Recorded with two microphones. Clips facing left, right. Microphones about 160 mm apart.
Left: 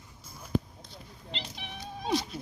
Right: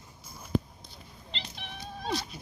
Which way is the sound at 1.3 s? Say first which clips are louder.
Left 2 dB; 10° left (ahead or behind).